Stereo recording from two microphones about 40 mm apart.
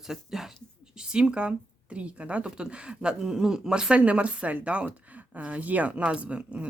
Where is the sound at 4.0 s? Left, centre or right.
Right.